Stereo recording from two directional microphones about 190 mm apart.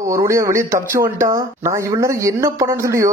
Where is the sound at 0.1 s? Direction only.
15° right (ahead or behind).